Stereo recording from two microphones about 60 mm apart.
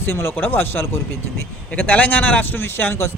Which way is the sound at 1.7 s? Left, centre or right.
Left.